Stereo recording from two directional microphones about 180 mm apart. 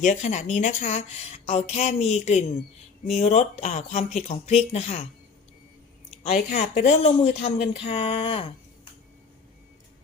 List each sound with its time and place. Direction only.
0.0 s speech: 40° left (ahead or behind)
6.2 s speech: 40° left (ahead or behind)